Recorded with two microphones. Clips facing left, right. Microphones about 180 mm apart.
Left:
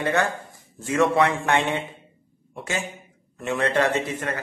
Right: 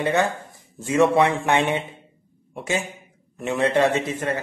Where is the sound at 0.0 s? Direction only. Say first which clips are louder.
Right 2 dB; 20° right (ahead or behind).